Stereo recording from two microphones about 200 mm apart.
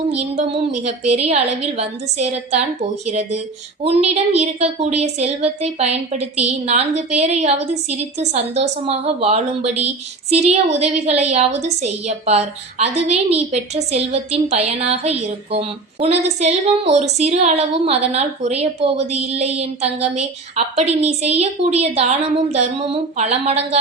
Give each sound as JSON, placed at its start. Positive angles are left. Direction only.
{"t": 0.1, "sound": "a woman's voice", "side_deg": -30}